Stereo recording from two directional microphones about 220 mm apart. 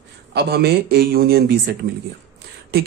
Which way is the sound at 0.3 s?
45° right (ahead or behind).